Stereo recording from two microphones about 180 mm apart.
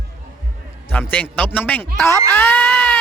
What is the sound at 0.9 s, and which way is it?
A man's voice, 10° left (ahead or behind).